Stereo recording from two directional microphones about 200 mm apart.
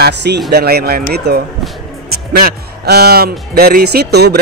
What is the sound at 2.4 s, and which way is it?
Speech, 55° right (ahead or behind).